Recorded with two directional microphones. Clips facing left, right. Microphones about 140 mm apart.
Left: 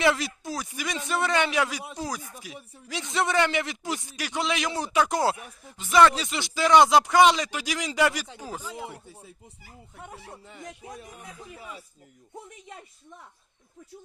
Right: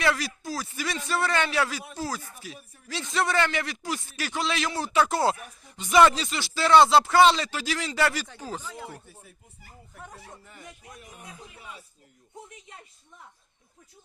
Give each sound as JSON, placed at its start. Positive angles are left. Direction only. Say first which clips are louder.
{"t": 0.0, "sound": "a man's voice", "louder": "left 2 dB", "side_deg": 20}
{"t": 5.7, "sound": "speech", "louder": "even", "side_deg": 0}
{"t": 6.2, "sound": "a man's voice", "louder": "left 1 dB", "side_deg": 20}
{"t": 10.2, "sound": "speech", "louder": "left 2 dB", "side_deg": 0}
{"t": 10.6, "sound": "speech", "louder": "left 9 dB", "side_deg": 90}